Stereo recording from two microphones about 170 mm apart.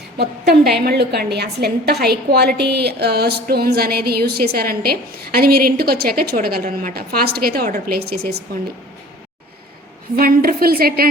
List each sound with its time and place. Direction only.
0.2 s a woman's voice: 70° right (ahead or behind)
10.2 s a woman's voice: 60° right (ahead or behind)